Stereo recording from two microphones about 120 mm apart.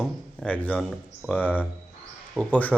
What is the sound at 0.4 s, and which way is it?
Speech, 15° left (ahead or behind).